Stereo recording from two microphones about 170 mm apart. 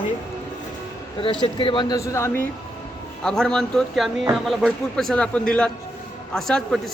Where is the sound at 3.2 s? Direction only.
5° left (ahead or behind).